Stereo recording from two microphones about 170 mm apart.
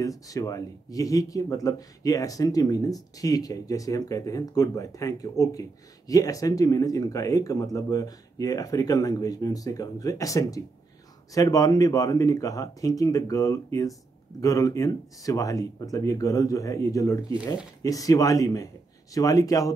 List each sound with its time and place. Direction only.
0.0 s speech: 20° left (ahead or behind)